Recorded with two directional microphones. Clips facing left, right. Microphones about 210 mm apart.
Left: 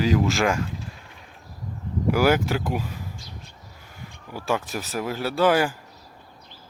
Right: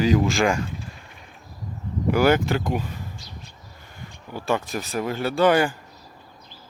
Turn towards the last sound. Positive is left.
turn(degrees=5)  # may be behind; listen again after turning